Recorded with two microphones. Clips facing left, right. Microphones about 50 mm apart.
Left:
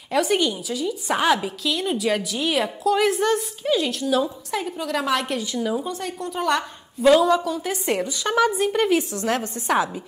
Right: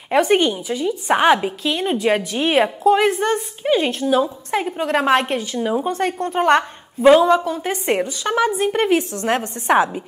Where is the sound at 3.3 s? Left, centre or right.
Right.